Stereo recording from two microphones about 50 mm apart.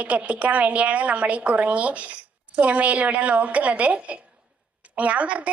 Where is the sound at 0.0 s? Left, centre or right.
Right.